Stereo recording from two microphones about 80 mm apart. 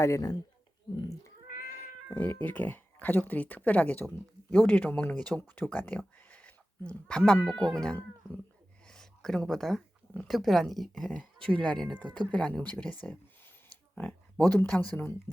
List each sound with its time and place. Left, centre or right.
0.0 s speech: left
2.0 s speech: left
6.2 s a sound: centre
7.3 s speech: centre
8.9 s a sound: centre
10.2 s speech: centre
11.4 s speech: centre
13.9 s a sound: centre
14.5 s speech: left